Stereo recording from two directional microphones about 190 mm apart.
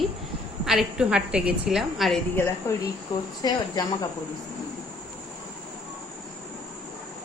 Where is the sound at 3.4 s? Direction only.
20° left (ahead or behind).